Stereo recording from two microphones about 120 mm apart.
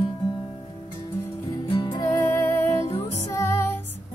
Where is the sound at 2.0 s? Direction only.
25° left (ahead or behind).